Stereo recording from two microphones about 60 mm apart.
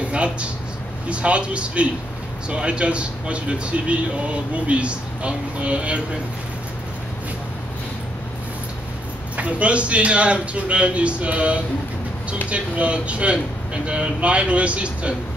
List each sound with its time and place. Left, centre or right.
0.0 s a sound: centre
1.0 s speech: right
9.4 s speech: right